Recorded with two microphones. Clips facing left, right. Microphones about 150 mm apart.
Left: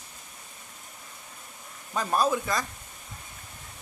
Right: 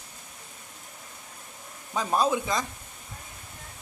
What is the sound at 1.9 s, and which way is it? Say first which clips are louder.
Speech: right 1 dB; 15° right (ahead or behind).